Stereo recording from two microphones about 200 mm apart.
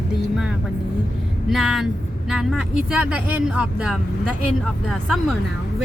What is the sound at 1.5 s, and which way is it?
Speech, centre (ahead or behind).